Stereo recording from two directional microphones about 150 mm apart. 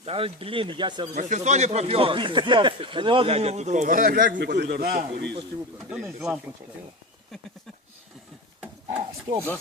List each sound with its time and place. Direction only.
0.0 s speech: 40° right (ahead or behind)
1.1 s speech: 50° right (ahead or behind); by 5.0 s 85° right
5.3 s speech: 30° right (ahead or behind)
6.0 s speech: 15° right (ahead or behind)
8.9 s speech: 30° right (ahead or behind)